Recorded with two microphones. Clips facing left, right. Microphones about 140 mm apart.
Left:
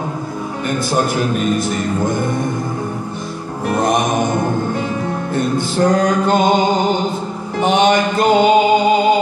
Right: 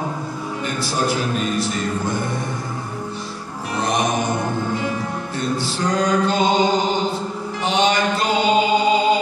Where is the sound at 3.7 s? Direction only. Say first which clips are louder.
Left 6 dB; 50° left (ahead or behind).